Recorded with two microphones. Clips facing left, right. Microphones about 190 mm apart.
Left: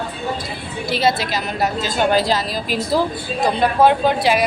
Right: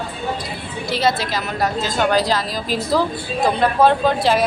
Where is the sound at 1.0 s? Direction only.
25° left (ahead or behind).